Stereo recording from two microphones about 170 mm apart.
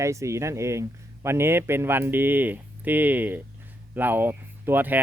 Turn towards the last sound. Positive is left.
turn(degrees=-10)  # may be behind; listen again after turning